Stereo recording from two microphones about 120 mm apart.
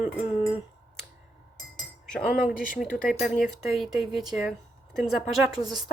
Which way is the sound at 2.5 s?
5° right (ahead or behind).